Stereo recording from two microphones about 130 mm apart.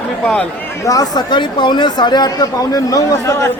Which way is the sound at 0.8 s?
30° left (ahead or behind).